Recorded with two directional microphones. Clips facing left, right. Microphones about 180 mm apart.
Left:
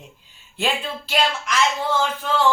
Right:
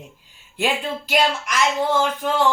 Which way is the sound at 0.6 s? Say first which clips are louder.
Right 2 dB; 15° right (ahead or behind).